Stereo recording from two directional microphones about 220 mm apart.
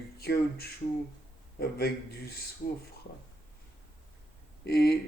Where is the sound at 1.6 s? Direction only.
45° left (ahead or behind).